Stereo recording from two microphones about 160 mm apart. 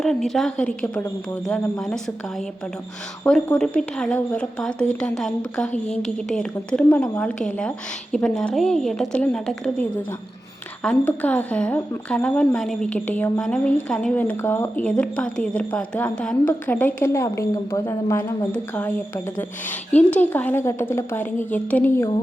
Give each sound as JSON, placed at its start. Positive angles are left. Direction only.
{"t": 0.0, "sound": "a woman's voice", "side_deg": 0}
{"t": 3.2, "sound": "a woman's voice", "side_deg": 5}
{"t": 10.8, "sound": "a woman's voice", "side_deg": 10}